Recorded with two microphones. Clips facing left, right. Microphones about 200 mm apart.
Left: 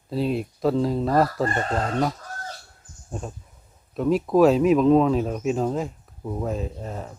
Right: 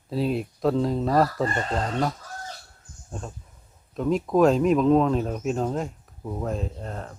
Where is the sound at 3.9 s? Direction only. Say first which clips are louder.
Left 2 dB; 5° left (ahead or behind).